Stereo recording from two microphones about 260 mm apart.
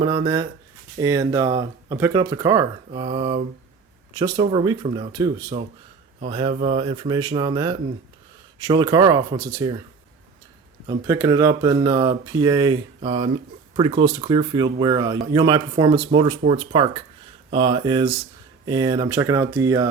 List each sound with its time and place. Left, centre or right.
0.0 s speech: right
10.8 s speech: centre